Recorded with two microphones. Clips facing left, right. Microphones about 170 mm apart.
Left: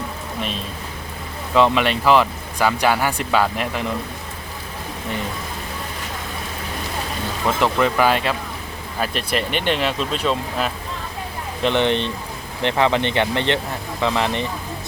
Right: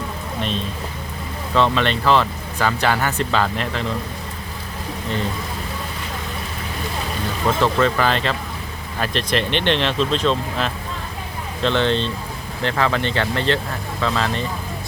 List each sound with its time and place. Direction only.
1.5 s speech: 10° left (ahead or behind)
7.6 s speech: 15° left (ahead or behind)